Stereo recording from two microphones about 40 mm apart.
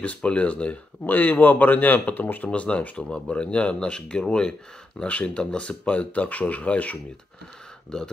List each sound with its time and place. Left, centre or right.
0.0 s speech: left
1.0 s speech: left
2.5 s speech: left; by 5.0 s centre
5.0 s speech: left